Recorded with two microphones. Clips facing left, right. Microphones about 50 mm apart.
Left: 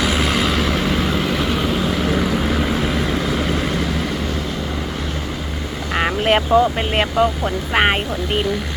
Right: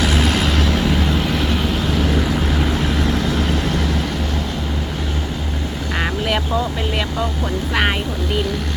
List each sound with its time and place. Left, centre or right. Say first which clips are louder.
0.0 s vehicle: even; centre
6.2 s speech: left 10 dB; left
7.7 s speech: left 3 dB; left